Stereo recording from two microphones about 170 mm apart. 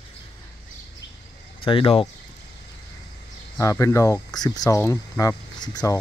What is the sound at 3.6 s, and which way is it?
Speech, 20° left (ahead or behind).